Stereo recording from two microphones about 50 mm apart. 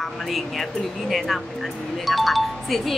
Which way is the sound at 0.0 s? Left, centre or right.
Centre.